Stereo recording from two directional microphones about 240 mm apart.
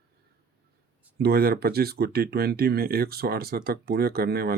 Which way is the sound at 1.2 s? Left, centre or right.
Right.